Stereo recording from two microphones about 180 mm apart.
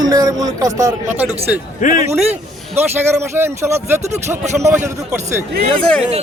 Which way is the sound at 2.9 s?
15° right (ahead or behind).